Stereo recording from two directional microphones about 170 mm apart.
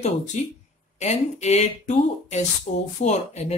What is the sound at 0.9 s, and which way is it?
Speech, 40° left (ahead or behind).